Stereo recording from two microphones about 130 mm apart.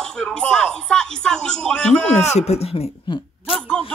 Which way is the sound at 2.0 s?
55° left (ahead or behind).